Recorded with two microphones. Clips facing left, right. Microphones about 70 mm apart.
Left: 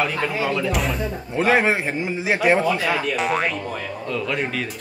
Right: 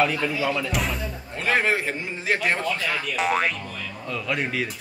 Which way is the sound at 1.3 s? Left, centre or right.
Centre.